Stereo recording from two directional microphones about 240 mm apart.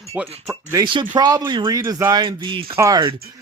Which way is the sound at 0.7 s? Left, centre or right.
Centre.